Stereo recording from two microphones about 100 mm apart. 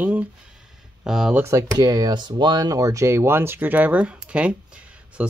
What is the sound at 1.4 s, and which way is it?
Speech, 30° right (ahead or behind).